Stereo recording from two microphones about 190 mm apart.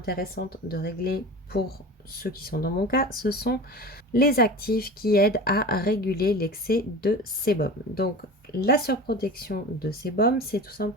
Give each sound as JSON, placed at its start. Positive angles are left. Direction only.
{"t": 0.0, "sound": "speech", "side_deg": 55}